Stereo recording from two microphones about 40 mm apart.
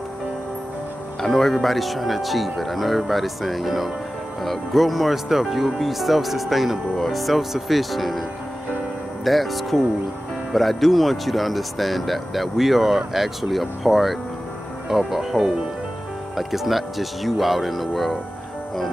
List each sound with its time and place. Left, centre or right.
1.2 s speech: centre
9.2 s speech: centre